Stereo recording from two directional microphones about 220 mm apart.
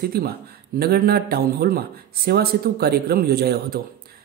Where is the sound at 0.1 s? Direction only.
45° right (ahead or behind).